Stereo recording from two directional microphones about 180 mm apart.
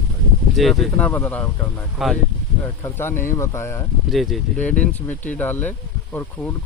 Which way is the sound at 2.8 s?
10° left (ahead or behind).